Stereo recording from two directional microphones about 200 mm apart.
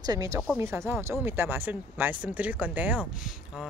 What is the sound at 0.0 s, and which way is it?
Speech, 20° right (ahead or behind).